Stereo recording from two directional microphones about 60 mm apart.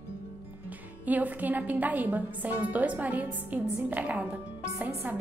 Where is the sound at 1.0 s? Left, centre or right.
Right.